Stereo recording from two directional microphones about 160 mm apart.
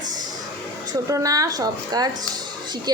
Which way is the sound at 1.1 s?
20° right (ahead or behind).